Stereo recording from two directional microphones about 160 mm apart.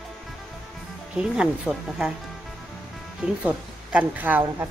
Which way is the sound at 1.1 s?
5° right (ahead or behind).